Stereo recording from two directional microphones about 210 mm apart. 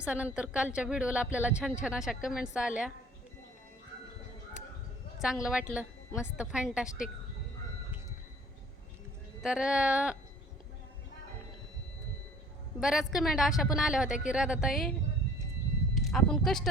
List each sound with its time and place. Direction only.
0.0 s a woman's voice: 5° right (ahead or behind)
5.2 s a woman's voice: 5° right (ahead or behind)
9.4 s a woman's voice: 5° right (ahead or behind)
12.8 s a woman's voice: centre (ahead or behind)
16.0 s speech: centre (ahead or behind)